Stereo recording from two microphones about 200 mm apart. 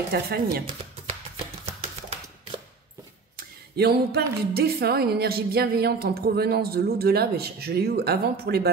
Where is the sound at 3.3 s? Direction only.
55° right (ahead or behind).